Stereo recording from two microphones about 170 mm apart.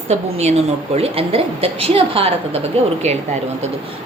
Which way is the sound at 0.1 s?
40° right (ahead or behind).